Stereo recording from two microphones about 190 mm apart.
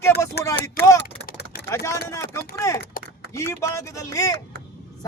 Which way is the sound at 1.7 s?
15° left (ahead or behind).